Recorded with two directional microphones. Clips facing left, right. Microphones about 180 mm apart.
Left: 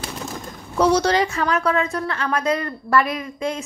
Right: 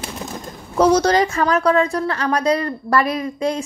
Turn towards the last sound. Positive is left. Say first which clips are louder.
# right 5 dB
turn(degrees=-35)  # may be behind; listen again after turning